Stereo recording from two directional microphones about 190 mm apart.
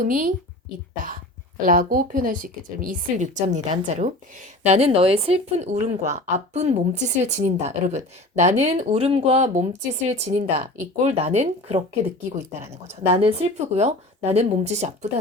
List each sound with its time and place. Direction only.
0.0 s speech: 45° right (ahead or behind)
1.6 s a woman's voice: 45° right (ahead or behind)